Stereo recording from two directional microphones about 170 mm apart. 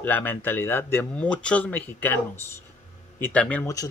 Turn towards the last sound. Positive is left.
turn(degrees=10)  # may be behind; listen again after turning